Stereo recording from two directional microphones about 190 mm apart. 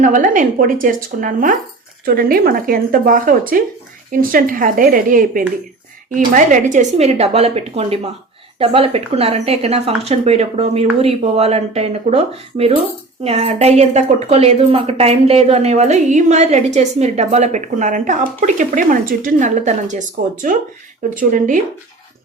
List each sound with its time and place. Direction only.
0.0 s a woman's voice: 45° right (ahead or behind)